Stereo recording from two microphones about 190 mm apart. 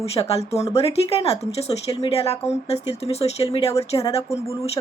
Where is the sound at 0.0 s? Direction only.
30° left (ahead or behind).